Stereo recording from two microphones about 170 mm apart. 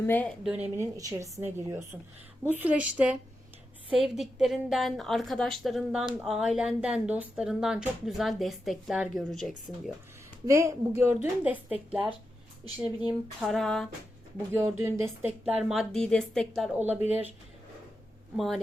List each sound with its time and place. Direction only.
0.0 s a woman's voice: 10° left (ahead or behind)
0.4 s a woman's voice: 5° right (ahead or behind)
0.9 s a woman's voice: 20° right (ahead or behind); by 9.5 s centre (ahead or behind)
10.4 s a woman's voice: 15° right (ahead or behind); by 13.8 s centre (ahead or behind)
14.5 s a woman's voice: 15° right (ahead or behind)
15.7 s speech: centre (ahead or behind)
16.7 s a woman's voice: 10° right (ahead or behind)
18.3 s speech: centre (ahead or behind)